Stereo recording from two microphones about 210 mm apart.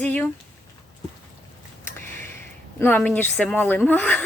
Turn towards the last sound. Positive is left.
turn(degrees=5)  # may be behind; listen again after turning